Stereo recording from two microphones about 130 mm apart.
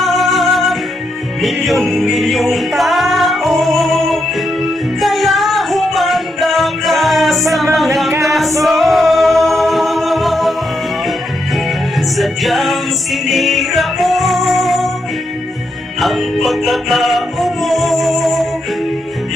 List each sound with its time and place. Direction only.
0.0 s music: centre (ahead or behind)
12.1 s music: centre (ahead or behind)
16.0 s music: centre (ahead or behind)